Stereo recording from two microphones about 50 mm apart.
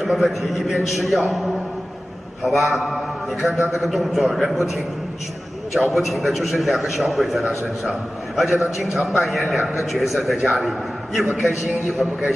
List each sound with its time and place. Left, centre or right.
0.0 s a man's voice: centre
5.7 s a man's voice: centre